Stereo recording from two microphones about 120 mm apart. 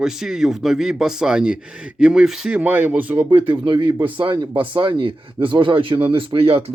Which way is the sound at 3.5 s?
40° right (ahead or behind).